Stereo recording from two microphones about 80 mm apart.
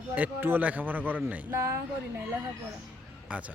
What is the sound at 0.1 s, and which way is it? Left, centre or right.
A man's voice, right.